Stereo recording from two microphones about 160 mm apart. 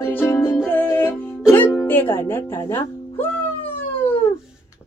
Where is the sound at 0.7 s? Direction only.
15° left (ahead or behind).